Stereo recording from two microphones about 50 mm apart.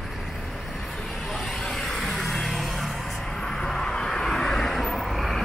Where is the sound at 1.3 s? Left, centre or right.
Centre.